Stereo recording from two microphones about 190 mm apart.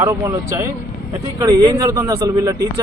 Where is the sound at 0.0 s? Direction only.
15° right (ahead or behind).